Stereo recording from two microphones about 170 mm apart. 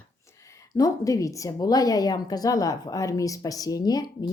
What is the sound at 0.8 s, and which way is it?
A woman's voice, 20° left (ahead or behind).